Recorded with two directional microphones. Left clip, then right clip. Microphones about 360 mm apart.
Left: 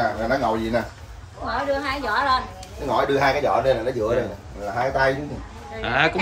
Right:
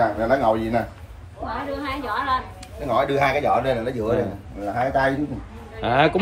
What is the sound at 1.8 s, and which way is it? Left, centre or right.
Speech, centre.